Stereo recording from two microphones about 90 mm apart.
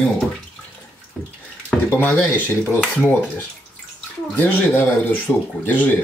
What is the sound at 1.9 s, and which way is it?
Speech, 20° left (ahead or behind).